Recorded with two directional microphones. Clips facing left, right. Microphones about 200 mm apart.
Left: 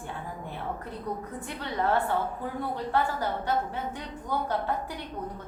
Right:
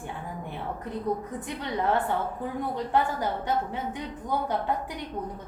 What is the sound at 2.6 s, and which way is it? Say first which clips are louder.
A woman's voice: right 2 dB; 15° right (ahead or behind).